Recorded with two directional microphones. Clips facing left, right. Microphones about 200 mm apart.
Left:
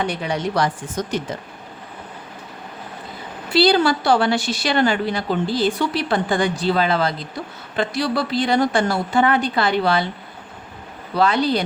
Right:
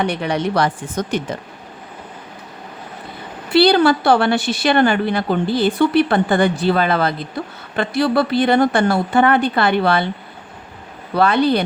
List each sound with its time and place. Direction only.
0.0 s a woman's voice: 60° right (ahead or behind)
3.5 s a woman's voice: 60° right (ahead or behind)
11.1 s a woman's voice: 60° right (ahead or behind)